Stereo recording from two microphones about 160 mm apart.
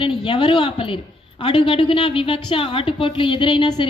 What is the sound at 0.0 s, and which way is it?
A woman's voice, 30° left (ahead or behind).